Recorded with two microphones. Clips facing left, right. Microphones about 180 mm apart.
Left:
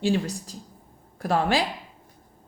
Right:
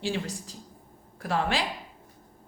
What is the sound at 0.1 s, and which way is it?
Speech, 40° left (ahead or behind).